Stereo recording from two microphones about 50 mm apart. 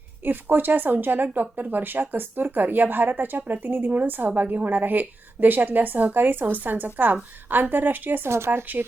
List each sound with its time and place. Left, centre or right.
0.3 s speech: right